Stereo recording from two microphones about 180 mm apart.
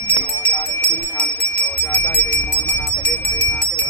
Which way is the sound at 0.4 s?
5° left (ahead or behind).